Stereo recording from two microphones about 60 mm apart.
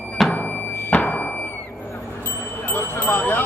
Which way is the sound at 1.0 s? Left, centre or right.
Left.